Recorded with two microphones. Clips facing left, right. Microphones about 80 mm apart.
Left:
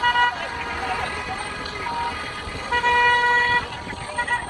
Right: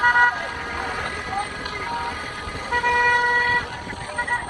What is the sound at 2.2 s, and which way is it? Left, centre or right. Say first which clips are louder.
Vehicle: even; left.